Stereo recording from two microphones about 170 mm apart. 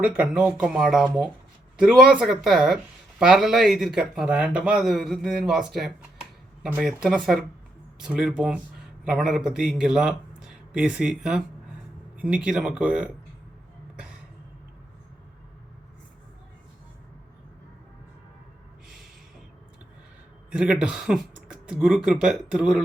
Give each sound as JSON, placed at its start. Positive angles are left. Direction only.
{"t": 0.0, "sound": "speech", "side_deg": -5}
{"t": 20.5, "sound": "speech", "side_deg": -5}